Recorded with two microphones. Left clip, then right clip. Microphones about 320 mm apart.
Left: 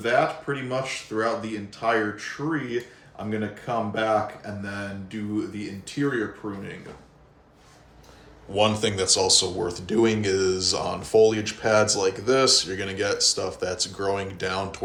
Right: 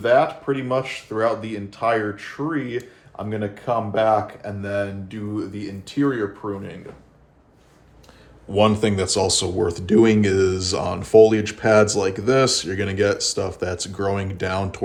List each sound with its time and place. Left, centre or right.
0.0 s speech: centre
6.4 s speech: centre
8.5 s speech: centre